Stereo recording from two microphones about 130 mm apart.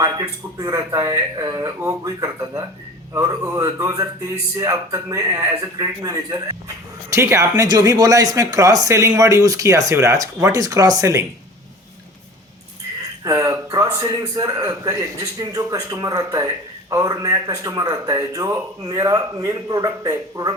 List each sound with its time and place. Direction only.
0.0 s speech: 30° right (ahead or behind)
13.2 s speech: 25° right (ahead or behind)